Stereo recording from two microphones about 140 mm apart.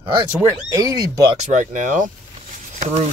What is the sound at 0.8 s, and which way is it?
Speech, 25° right (ahead or behind).